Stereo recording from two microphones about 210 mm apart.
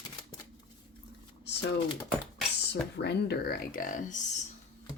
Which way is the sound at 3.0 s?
50° left (ahead or behind).